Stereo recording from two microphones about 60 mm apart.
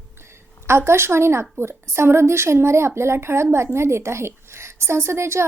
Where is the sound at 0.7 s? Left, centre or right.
Right.